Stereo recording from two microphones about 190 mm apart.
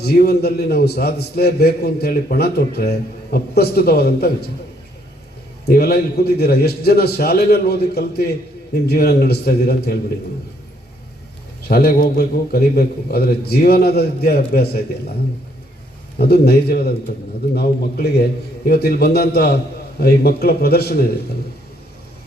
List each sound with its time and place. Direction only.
0.0 s a man's voice: 55° left (ahead or behind)
5.6 s a man's voice: 55° left (ahead or behind)
11.7 s a man's voice: 50° left (ahead or behind)
16.1 s a man's voice: 55° left (ahead or behind)